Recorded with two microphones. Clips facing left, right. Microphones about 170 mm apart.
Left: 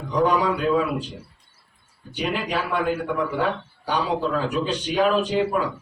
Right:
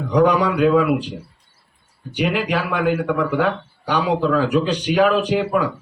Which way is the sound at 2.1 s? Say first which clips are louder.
Right 5 dB; 70° right (ahead or behind).